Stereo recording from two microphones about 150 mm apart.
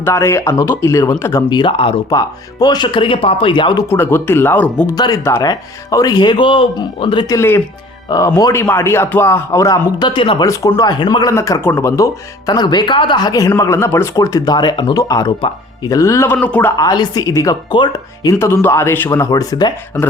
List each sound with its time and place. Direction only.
0.0 s speech: 20° left (ahead or behind)
1.5 s speech: 30° left (ahead or behind)
2.0 s speech: 25° left (ahead or behind)
3.8 s speech: 15° left (ahead or behind)
4.9 s speech: 25° left (ahead or behind)
7.3 s speech: 15° left (ahead or behind); by 10.3 s 35° left (ahead or behind)
10.4 s speech: 20° left (ahead or behind)
15.9 s speech: 20° left (ahead or behind)
16.7 s speech: 25° left (ahead or behind)